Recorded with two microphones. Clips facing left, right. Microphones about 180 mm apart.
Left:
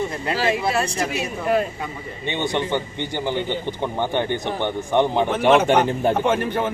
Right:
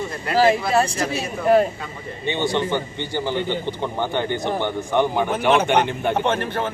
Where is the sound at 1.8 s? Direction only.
20° left (ahead or behind).